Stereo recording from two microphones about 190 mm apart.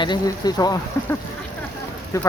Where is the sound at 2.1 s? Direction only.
15° left (ahead or behind).